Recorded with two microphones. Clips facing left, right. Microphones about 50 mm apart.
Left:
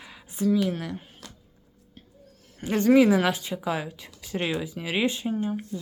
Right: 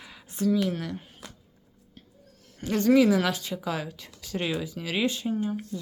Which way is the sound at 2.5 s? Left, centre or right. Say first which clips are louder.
Left 2 dB; centre.